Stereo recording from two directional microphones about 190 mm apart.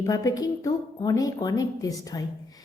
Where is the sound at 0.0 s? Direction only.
20° left (ahead or behind).